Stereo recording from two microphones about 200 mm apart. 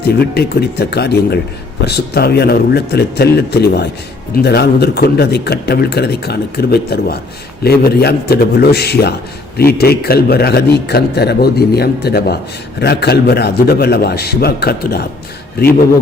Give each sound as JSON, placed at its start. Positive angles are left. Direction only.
{"t": 0.0, "sound": "a man's voice", "side_deg": 55}